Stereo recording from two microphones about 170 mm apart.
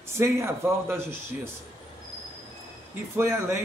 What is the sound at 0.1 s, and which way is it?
Speech, 15° right (ahead or behind).